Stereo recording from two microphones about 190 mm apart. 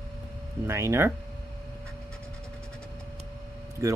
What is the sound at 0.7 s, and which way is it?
Speech, 15° right (ahead or behind).